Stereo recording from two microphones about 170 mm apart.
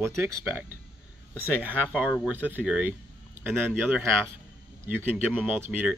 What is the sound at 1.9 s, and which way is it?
Speech, 10° right (ahead or behind).